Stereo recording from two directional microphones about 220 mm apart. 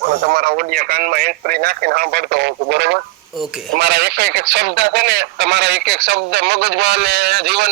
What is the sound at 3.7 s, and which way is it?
Speech, 50° right (ahead or behind).